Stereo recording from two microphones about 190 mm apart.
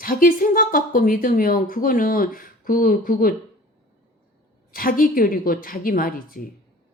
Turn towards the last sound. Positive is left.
turn(degrees=50)  # may be behind; listen again after turning